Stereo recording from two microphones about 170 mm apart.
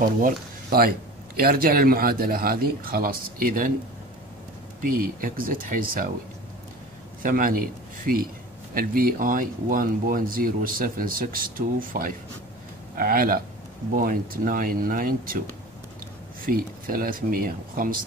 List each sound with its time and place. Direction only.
0.0 s speech: 60° right (ahead or behind)
4.8 s speech: 55° right (ahead or behind)
7.2 s speech: 55° right (ahead or behind)
16.4 s speech: 55° right (ahead or behind)